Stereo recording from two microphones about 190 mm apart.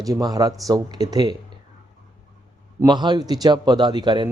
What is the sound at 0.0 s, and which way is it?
Speech, 20° right (ahead or behind).